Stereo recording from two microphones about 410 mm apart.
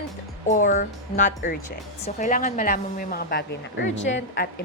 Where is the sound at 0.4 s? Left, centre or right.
Centre.